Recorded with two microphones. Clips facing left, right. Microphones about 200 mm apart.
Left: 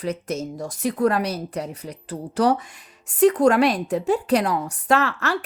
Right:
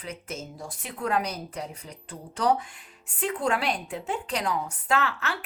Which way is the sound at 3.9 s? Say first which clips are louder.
Left 11 dB; 70° left (ahead or behind).